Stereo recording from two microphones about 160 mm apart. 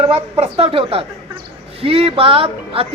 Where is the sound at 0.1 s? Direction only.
35° right (ahead or behind).